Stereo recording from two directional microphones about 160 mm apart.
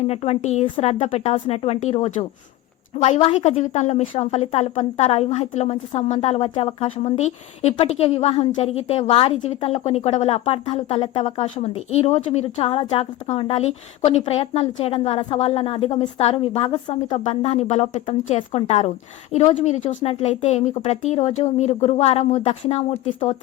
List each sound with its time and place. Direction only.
0.1 s a woman's voice: 40° left (ahead or behind)
22.6 s a woman's voice: 35° left (ahead or behind)